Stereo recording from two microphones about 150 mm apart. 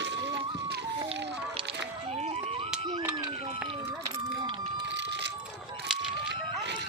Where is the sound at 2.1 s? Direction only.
45° right (ahead or behind).